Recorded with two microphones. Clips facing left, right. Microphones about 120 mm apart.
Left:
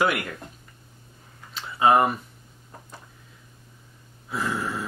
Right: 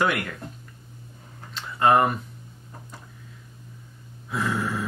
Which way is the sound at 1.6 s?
5° left (ahead or behind).